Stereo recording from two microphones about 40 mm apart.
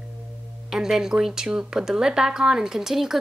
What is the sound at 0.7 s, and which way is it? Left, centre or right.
A woman's voice, centre.